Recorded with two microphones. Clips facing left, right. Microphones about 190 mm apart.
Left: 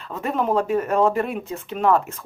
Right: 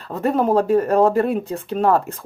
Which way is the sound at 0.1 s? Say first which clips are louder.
Right 5 dB; 35° right (ahead or behind).